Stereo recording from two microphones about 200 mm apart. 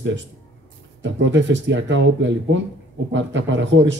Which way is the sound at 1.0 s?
65° right (ahead or behind).